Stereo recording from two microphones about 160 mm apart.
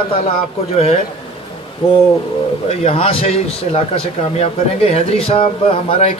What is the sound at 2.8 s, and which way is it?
A man's voice, 35° left (ahead or behind).